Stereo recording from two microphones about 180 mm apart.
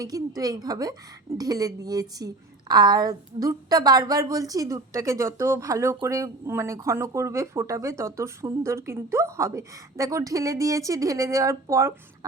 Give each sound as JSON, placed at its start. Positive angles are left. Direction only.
{"t": 0.0, "sound": "a woman's voice", "side_deg": -20}